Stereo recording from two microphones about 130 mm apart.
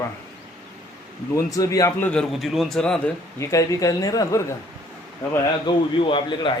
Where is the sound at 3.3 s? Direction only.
25° left (ahead or behind).